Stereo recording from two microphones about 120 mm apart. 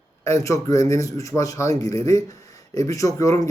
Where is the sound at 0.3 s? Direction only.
25° left (ahead or behind).